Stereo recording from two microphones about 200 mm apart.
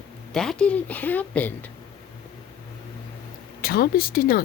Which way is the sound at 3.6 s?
50° left (ahead or behind).